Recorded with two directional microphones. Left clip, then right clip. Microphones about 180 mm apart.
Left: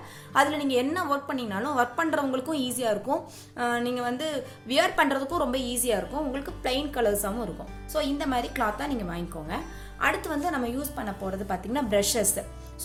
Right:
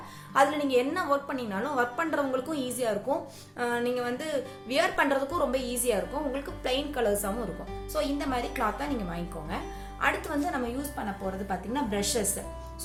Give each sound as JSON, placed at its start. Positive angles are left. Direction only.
{"t": 0.3, "sound": "a woman's voice", "side_deg": 25}